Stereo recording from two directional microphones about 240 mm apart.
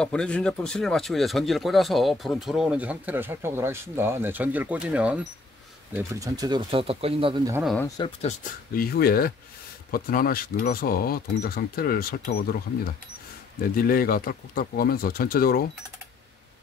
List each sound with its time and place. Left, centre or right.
0.0 s speech: centre; by 7.5 s right
7.5 s speech: centre
8.2 s speech: left
13.6 s speech: left